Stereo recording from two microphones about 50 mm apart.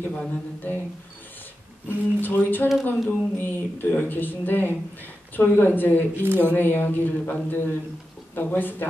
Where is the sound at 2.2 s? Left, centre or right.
Left.